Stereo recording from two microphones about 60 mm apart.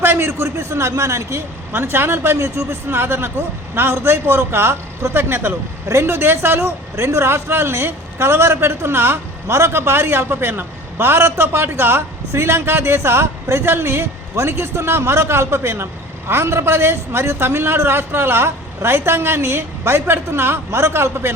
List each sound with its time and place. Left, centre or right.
0.0 s a man's voice: right
1.7 s a man's voice: right